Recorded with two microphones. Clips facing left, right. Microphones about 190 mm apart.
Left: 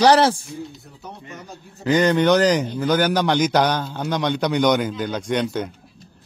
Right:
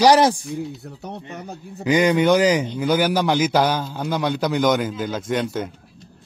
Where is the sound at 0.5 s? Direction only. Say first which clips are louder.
Right 5 dB; 65° right (ahead or behind).